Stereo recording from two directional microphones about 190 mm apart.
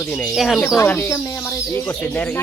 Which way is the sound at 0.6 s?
15° left (ahead or behind).